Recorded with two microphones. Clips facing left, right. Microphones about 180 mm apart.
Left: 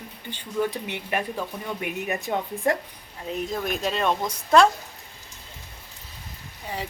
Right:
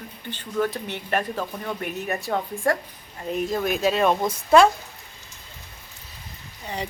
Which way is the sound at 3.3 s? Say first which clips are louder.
Right 4 dB; centre (ahead or behind).